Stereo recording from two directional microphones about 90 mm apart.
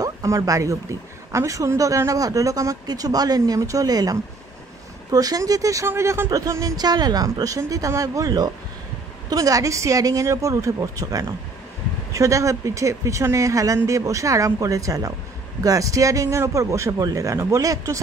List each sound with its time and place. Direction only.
0.0 s a sound: 40° right (ahead or behind)
0.4 s speech: 35° right (ahead or behind)
5.9 s speech: 30° right (ahead or behind)
6.3 s speech: 40° right (ahead or behind)